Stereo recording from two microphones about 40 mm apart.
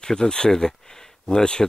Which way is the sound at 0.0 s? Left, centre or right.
Centre.